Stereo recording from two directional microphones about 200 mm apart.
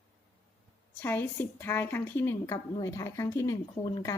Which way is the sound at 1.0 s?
10° left (ahead or behind).